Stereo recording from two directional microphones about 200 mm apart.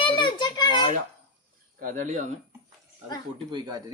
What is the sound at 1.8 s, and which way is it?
Speech, 35° right (ahead or behind).